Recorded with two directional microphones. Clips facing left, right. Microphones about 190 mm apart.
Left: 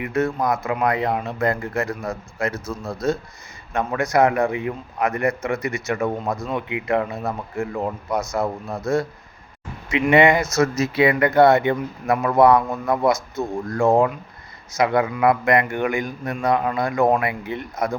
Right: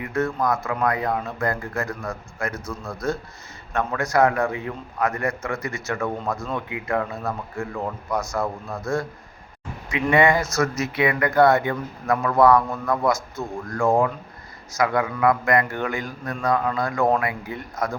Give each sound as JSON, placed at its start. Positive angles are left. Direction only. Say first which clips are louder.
{"t": 0.0, "sound": "a man's voice", "louder": "left 2 dB", "side_deg": 20}